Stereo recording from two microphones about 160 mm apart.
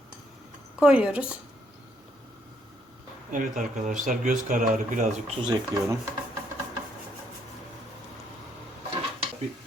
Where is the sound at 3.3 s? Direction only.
55° right (ahead or behind).